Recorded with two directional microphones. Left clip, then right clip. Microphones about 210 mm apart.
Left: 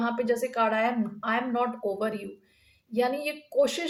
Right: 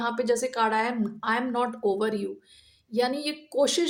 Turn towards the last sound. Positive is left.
turn(degrees=-45)  # may be behind; listen again after turning